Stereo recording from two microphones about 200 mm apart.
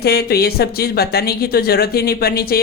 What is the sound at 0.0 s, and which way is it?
Speech, 50° left (ahead or behind).